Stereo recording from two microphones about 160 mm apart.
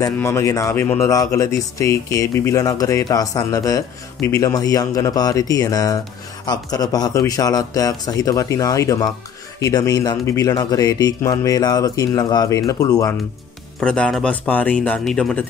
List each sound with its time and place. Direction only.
0.0 s speech: 20° left (ahead or behind)
13.7 s speech: 5° left (ahead or behind)